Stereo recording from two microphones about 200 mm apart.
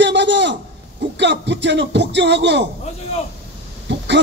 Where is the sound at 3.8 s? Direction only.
60° right (ahead or behind).